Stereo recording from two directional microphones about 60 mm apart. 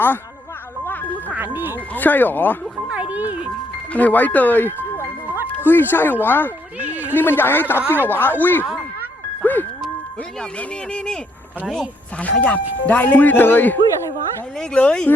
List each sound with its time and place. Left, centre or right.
0.9 s a sound: left
1.4 s speech: right
2.0 s a man's voice: left
2.9 s music: right
3.9 s a man's voice: left
6.7 s speech: right
7.1 s a man's voice: left
9.4 s music: left
10.6 s speech: centre
12.2 s speech: left
14.6 s speech: centre